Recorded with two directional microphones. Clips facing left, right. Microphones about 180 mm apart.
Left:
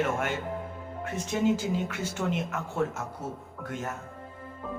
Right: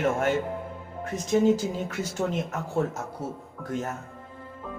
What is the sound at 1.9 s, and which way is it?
Speech, 40° right (ahead or behind).